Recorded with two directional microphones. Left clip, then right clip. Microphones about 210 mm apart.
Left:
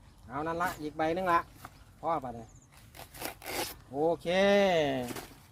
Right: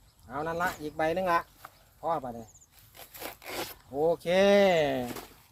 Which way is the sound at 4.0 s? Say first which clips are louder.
Right 3 dB; 25° right (ahead or behind).